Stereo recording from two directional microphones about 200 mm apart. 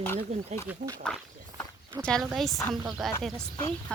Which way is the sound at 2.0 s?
5° left (ahead or behind).